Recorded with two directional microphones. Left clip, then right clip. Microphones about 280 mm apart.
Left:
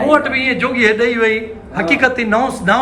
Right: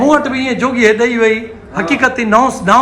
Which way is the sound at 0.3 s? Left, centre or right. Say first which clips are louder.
Even; centre.